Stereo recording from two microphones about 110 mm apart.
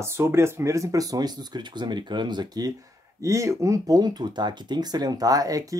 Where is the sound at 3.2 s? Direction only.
30° right (ahead or behind).